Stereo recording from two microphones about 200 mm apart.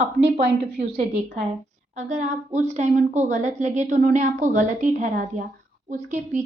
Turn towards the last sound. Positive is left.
turn(degrees=-40)  # may be behind; listen again after turning